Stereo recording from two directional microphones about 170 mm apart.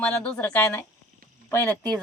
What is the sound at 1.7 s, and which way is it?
Speech, 25° right (ahead or behind).